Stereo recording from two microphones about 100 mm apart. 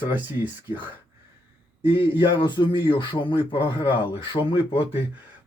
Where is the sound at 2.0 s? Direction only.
55° left (ahead or behind).